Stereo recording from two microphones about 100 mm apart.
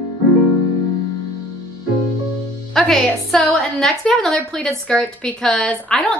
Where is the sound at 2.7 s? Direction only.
5° left (ahead or behind).